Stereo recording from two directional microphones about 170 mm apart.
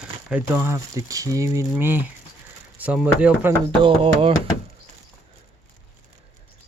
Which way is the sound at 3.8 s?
30° right (ahead or behind).